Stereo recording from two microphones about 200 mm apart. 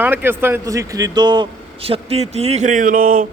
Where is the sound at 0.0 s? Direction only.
10° right (ahead or behind).